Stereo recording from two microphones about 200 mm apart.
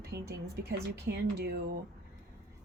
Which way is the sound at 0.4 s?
50° right (ahead or behind).